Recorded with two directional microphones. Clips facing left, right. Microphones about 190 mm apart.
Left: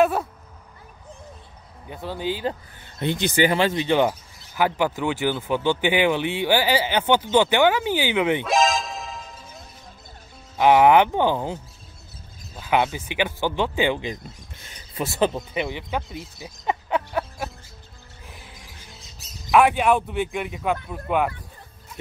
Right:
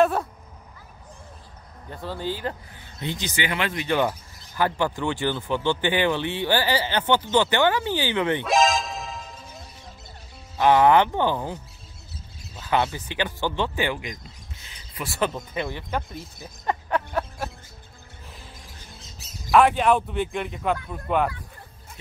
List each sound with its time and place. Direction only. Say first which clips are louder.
0.0 s a sound: left 1 dB; centre (ahead or behind)
1.9 s speech: left 2 dB; 15° left (ahead or behind)
3.0 s speech: left 7 dB; 55° left (ahead or behind)
3.3 s speech: left 8 dB; 35° left (ahead or behind)
3.9 s speech: left 3 dB; 15° left (ahead or behind)
8.5 s music: even; centre (ahead or behind)
10.6 s speech: left 2 dB; 15° left (ahead or behind)
14.2 s a sound: left 4 dB; 50° left (ahead or behind)
15.0 s speech: left 4 dB; 20° left (ahead or behind)
15.9 s speech: left 1 dB; 5° left (ahead or behind)
16.4 s a sound: left 1 dB; 5° left (ahead or behind)
19.5 s speech: even; 5° left (ahead or behind)